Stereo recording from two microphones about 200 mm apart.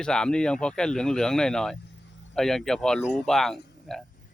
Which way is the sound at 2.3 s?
Centre (ahead or behind).